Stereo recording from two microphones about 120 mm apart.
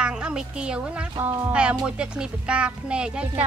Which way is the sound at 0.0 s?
10° right (ahead or behind).